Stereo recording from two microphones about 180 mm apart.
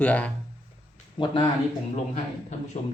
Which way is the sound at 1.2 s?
25° left (ahead or behind).